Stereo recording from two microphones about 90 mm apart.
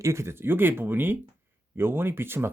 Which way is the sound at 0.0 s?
30° right (ahead or behind).